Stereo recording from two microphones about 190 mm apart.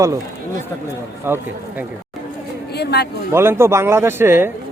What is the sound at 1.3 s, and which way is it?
Speech, 10° right (ahead or behind).